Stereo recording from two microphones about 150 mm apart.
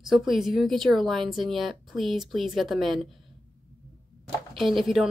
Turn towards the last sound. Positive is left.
turn(degrees=0)  # may be behind; listen again after turning